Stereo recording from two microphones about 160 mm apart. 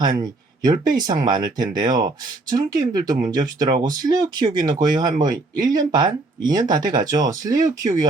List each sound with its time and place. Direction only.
0.0 s speech: 25° right (ahead or behind)